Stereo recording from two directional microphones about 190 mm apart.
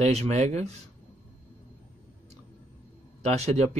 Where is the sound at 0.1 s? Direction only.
35° right (ahead or behind).